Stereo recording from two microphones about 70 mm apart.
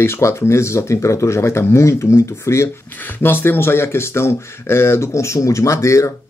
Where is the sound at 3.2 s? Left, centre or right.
Left.